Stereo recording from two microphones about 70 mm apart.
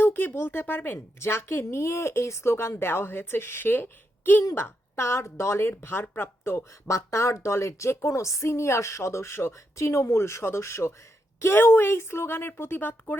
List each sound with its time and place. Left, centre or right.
0.0 s speech: left
0.9 s speech: left